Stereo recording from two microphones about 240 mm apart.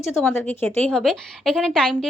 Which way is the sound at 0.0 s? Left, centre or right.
Centre.